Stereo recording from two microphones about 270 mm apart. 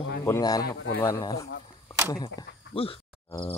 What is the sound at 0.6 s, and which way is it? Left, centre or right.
Speech, left.